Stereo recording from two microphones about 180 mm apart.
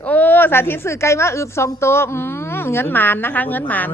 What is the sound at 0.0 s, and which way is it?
A woman's voice, 10° left (ahead or behind).